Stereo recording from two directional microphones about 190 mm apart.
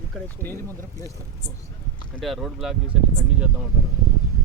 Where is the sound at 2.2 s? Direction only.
Centre (ahead or behind).